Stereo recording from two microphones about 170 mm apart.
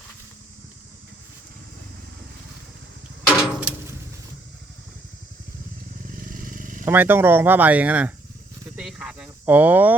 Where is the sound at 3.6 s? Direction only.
10° right (ahead or behind).